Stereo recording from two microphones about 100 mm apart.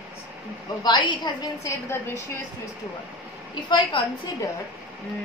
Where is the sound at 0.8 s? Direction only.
50° left (ahead or behind).